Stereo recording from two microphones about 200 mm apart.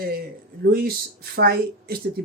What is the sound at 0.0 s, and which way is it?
Speech, 50° right (ahead or behind).